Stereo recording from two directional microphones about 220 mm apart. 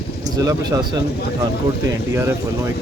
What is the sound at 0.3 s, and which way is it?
Speech, 15° right (ahead or behind).